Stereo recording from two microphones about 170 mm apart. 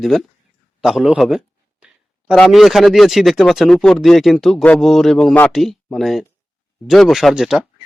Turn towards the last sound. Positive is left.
turn(degrees=-5)  # may be behind; listen again after turning